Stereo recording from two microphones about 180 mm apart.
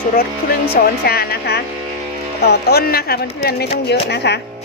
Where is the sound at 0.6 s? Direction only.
60° left (ahead or behind).